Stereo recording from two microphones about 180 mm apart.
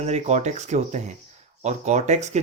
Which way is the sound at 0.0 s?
40° right (ahead or behind).